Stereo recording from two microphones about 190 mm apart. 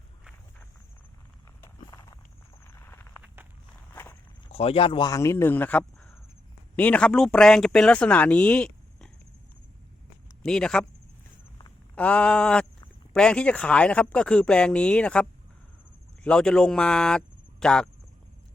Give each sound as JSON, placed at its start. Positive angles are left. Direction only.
{"t": 1.6, "sound": "a sound", "side_deg": 20}
{"t": 3.9, "sound": "walk", "side_deg": 10}
{"t": 4.5, "sound": "speech", "side_deg": 30}
{"t": 10.4, "sound": "speech", "side_deg": 5}
{"t": 11.9, "sound": "speech", "side_deg": 5}